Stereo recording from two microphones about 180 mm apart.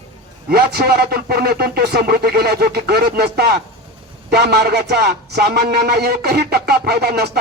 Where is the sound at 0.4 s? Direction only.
60° right (ahead or behind).